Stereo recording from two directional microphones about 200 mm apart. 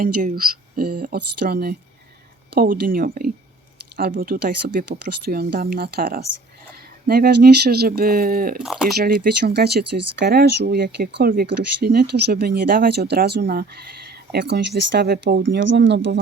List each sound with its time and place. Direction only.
0.0 s speech: 40° right (ahead or behind)
8.6 s speech: centre (ahead or behind)
9.0 s speech: 50° right (ahead or behind)